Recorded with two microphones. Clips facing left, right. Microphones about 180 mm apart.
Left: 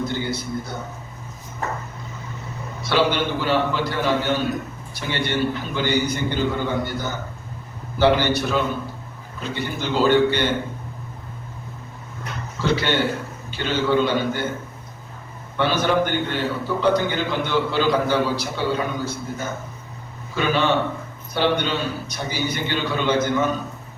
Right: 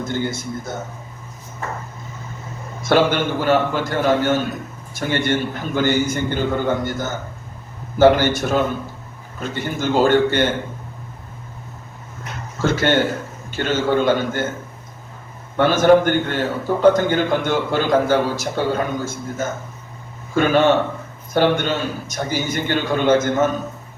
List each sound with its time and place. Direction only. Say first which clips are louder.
0.0 s a man's voice: right 2 dB; 50° right (ahead or behind)
2.8 s a man's voice: right 4 dB; 50° right (ahead or behind)
12.6 s a man's voice: right 3 dB; 45° right (ahead or behind)
15.5 s a man's voice: right 7 dB; 45° right (ahead or behind)